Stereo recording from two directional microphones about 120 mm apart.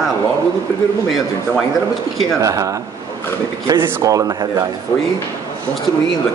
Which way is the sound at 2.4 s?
30° right (ahead or behind).